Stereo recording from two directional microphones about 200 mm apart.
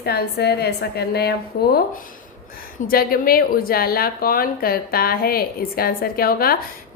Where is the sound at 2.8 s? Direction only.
45° left (ahead or behind).